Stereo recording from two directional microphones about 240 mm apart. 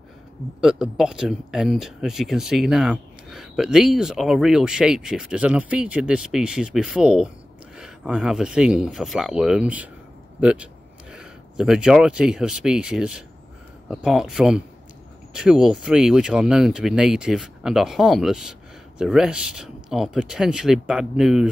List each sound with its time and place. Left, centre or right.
0.6 s speech: centre